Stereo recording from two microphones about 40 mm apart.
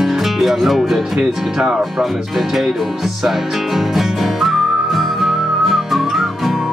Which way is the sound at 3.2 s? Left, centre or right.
Centre.